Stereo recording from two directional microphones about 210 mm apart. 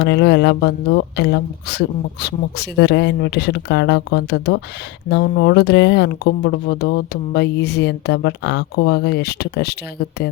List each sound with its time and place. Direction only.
0.0 s speech: 55° left (ahead or behind)